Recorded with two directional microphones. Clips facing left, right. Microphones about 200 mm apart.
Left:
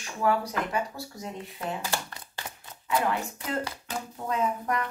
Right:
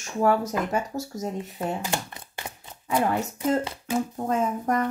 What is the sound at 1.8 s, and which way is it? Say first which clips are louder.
Speech: right 3 dB; 20° right (ahead or behind).